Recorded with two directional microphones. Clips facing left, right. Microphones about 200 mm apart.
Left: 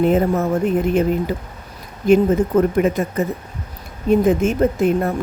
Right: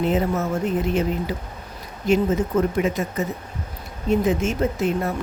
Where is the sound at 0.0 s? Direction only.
50° left (ahead or behind).